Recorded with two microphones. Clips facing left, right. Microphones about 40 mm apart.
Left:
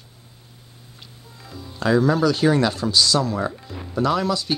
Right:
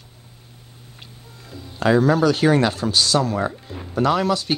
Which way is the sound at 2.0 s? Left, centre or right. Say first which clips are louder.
Right 1 dB; right.